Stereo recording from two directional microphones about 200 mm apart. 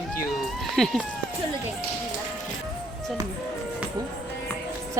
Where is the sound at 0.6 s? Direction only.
Centre (ahead or behind).